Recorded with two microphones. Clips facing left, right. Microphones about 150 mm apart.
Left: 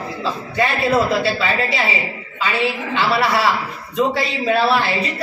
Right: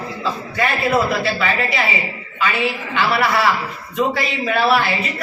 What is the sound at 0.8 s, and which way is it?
Speech, 30° left (ahead or behind).